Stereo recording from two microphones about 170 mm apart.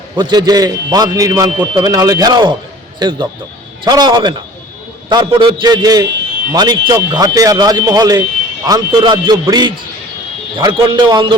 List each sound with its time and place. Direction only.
0.2 s speech: 25° right (ahead or behind)